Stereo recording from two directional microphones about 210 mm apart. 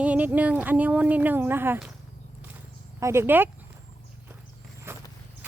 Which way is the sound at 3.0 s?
15° right (ahead or behind).